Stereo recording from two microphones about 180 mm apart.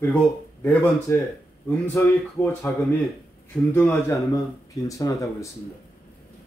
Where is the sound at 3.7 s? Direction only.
15° left (ahead or behind).